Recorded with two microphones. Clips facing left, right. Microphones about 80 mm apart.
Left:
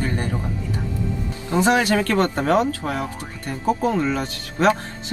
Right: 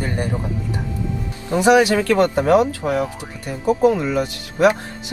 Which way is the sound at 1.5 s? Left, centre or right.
Centre.